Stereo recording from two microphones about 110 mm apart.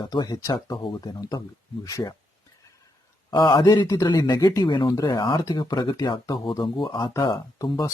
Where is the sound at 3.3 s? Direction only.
40° left (ahead or behind).